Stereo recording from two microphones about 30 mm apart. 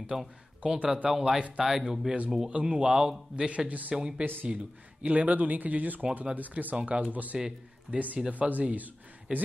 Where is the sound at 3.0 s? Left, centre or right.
Centre.